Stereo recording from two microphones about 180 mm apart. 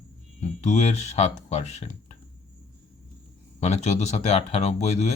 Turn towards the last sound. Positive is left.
turn(degrees=40)  # may be behind; listen again after turning